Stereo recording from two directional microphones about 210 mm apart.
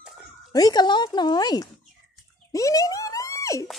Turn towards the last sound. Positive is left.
turn(degrees=15)  # may be behind; listen again after turning